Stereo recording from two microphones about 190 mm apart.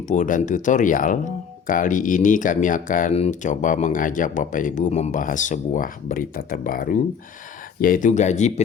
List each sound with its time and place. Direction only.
0.1 s speech: 40° left (ahead or behind)